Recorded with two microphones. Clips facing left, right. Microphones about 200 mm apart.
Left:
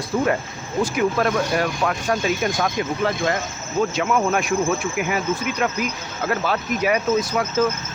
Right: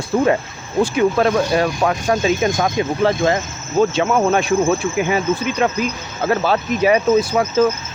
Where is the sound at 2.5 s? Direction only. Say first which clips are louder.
Right 4 dB; 45° right (ahead or behind).